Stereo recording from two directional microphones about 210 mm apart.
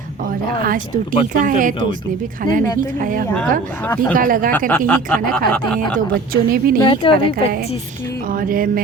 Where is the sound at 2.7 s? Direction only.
40° right (ahead or behind).